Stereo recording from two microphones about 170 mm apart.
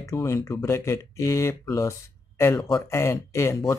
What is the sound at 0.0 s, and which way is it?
Speech, 20° left (ahead or behind).